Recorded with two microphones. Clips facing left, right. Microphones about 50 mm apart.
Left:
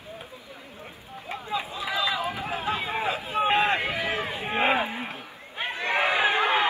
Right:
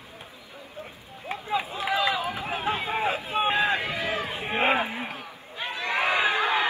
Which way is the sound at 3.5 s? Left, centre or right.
Left.